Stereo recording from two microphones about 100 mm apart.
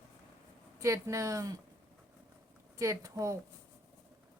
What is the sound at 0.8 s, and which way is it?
Speech, 30° right (ahead or behind).